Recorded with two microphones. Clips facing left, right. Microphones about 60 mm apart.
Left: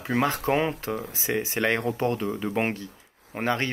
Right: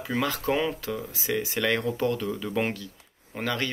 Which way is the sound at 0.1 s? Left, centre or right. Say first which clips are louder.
Left 3 dB; left.